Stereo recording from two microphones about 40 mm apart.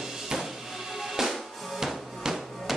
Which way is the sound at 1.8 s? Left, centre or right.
Centre.